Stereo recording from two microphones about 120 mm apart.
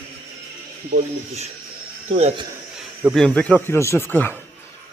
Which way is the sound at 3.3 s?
10° left (ahead or behind).